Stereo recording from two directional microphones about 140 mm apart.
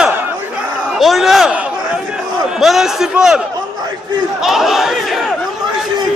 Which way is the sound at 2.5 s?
Centre (ahead or behind).